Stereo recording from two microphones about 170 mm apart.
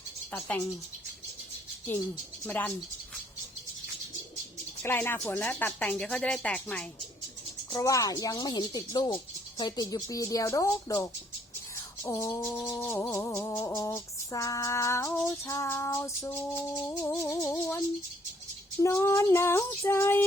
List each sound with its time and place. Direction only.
0.3 s speech: 10° left (ahead or behind)
2.4 s speech: 5° left (ahead or behind)
4.8 s speech: 15° left (ahead or behind)
7.7 s speech: 20° left (ahead or behind)